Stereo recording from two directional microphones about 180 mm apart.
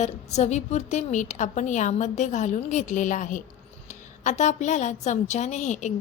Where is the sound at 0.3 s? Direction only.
40° left (ahead or behind).